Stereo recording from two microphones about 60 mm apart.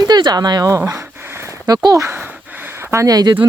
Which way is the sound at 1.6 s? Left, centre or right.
Right.